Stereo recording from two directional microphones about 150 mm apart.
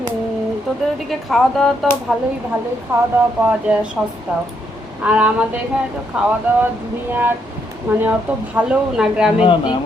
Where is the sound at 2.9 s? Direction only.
15° right (ahead or behind).